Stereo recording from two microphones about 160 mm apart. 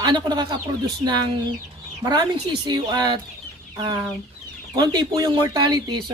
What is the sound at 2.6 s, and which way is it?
Speech, 25° right (ahead or behind).